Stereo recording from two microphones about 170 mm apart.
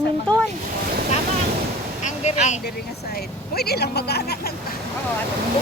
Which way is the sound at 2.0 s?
40° left (ahead or behind).